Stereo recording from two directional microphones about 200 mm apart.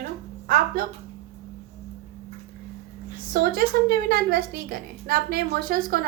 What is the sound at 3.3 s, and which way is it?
A woman's voice, 45° right (ahead or behind).